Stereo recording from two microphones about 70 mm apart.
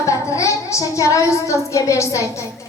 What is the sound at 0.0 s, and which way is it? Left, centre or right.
Child singing, left.